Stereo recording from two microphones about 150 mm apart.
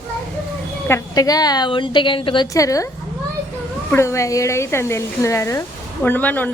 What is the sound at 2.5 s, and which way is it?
Speech, 20° left (ahead or behind).